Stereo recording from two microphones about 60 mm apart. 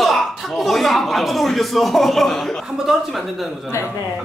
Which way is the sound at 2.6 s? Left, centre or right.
Centre.